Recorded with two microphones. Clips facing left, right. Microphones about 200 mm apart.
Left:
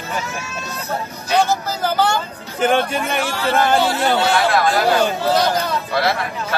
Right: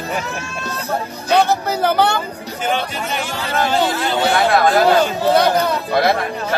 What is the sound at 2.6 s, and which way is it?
Speech, 55° left (ahead or behind).